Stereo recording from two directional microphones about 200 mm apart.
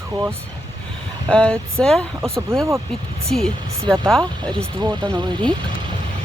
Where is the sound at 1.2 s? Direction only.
5° left (ahead or behind).